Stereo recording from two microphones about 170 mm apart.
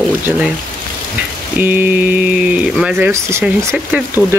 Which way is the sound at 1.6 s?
10° right (ahead or behind).